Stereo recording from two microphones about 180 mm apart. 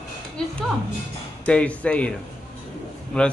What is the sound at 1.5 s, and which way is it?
Speech, 5° left (ahead or behind).